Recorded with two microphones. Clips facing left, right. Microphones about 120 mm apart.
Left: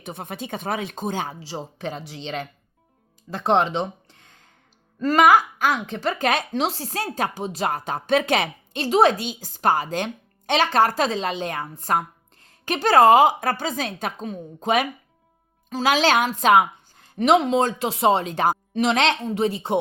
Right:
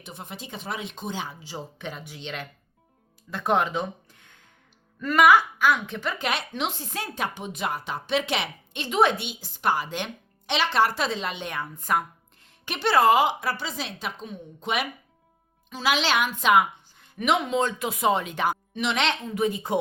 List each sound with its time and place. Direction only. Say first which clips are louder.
0.0 s speech: left 7 dB; 50° left (ahead or behind); by 19.5 s 30° left (ahead or behind)